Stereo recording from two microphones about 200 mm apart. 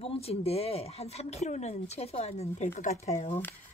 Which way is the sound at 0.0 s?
30° left (ahead or behind).